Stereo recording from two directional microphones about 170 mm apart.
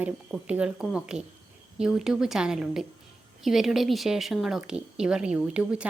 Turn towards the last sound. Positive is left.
turn(degrees=-5)  # may be behind; listen again after turning